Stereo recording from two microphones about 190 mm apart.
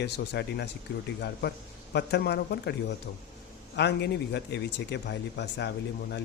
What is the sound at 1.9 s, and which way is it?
Speech, 60° left (ahead or behind).